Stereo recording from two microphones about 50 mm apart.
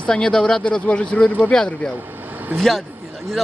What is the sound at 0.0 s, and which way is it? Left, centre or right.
Speech, centre.